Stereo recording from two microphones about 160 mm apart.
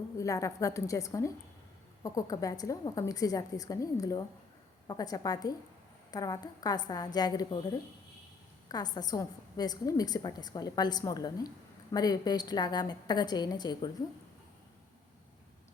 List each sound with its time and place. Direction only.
0.2 s a woman's voice: 20° left (ahead or behind)
8.7 s a woman's voice: 25° left (ahead or behind)